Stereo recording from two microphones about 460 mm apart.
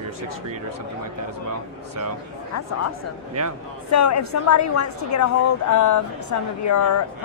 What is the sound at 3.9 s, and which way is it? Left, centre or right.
A woman's voice, left.